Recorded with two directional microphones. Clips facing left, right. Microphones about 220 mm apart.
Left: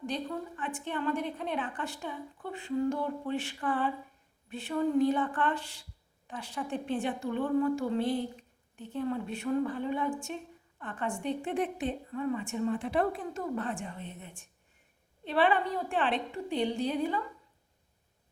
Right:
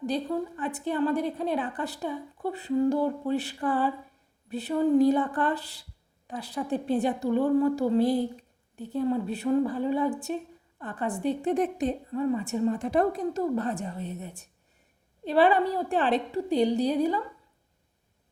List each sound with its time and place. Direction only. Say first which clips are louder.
0.0 s a woman's voice: right 6 dB; 35° right (ahead or behind)